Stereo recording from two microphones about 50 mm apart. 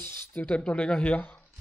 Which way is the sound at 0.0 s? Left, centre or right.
Left.